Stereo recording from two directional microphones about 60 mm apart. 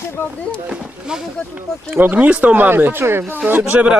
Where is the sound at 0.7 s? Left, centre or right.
Centre.